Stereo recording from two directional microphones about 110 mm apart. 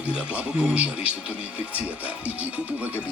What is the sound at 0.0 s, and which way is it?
A man's voice, 10° right (ahead or behind).